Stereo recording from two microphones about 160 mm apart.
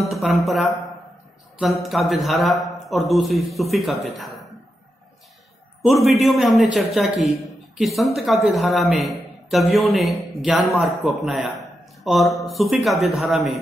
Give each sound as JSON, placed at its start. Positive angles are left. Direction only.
{"t": 0.1, "sound": "a man's voice", "side_deg": 0}
{"t": 4.2, "sound": "a sound", "side_deg": 0}
{"t": 5.8, "sound": "a man's voice", "side_deg": 0}